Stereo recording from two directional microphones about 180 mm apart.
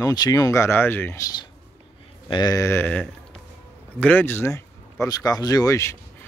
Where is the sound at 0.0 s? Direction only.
20° left (ahead or behind).